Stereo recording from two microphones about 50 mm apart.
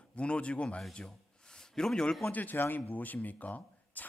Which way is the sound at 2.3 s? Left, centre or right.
Left.